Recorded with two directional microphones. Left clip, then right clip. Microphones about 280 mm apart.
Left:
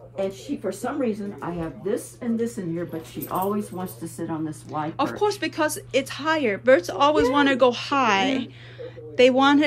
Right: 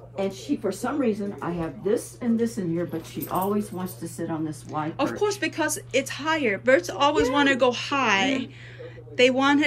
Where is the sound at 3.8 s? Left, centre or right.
Left.